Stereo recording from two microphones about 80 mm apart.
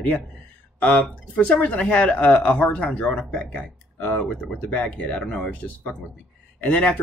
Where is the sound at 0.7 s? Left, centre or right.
Centre.